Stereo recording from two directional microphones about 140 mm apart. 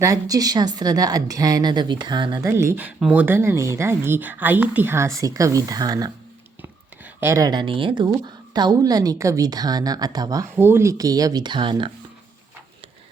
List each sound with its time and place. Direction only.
0.0 s a woman's voice: 25° right (ahead or behind)
2.5 s speech: 20° right (ahead or behind)
6.6 s a sound: 15° right (ahead or behind); by 8.1 s 35° right (ahead or behind)
8.2 s a woman's voice: 30° right (ahead or behind)